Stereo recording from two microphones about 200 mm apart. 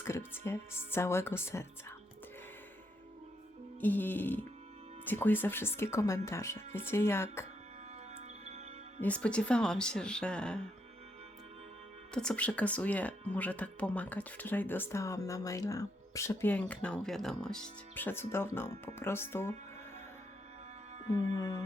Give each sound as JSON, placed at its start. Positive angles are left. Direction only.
{"t": 0.0, "sound": "speech", "side_deg": 10}
{"t": 3.8, "sound": "speech", "side_deg": 10}
{"t": 9.0, "sound": "speech", "side_deg": 5}
{"t": 12.1, "sound": "speech", "side_deg": 5}
{"t": 21.3, "sound": "speech", "side_deg": 20}